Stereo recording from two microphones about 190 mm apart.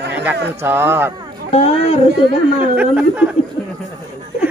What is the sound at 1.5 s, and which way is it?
Speech, 30° left (ahead or behind).